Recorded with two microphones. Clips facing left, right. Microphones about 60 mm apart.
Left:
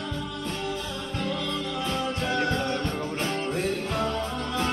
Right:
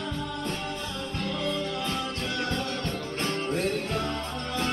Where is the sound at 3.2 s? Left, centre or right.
Centre.